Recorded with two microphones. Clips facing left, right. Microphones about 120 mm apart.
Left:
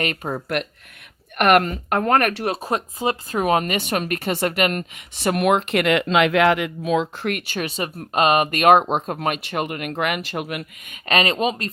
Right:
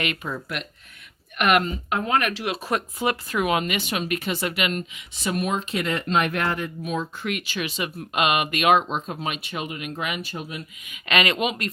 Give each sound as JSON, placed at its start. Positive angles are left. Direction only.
{"t": 0.0, "sound": "speech", "side_deg": 45}
{"t": 2.6, "sound": "speech", "side_deg": 30}
{"t": 7.3, "sound": "speech", "side_deg": 50}
{"t": 11.1, "sound": "speech", "side_deg": 35}